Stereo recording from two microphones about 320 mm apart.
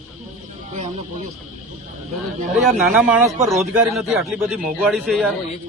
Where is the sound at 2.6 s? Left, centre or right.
Centre.